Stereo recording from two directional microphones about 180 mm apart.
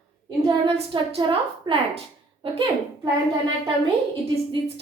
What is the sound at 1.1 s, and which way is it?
A woman's voice, 30° right (ahead or behind).